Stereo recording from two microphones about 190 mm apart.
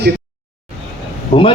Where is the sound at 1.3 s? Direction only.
35° left (ahead or behind).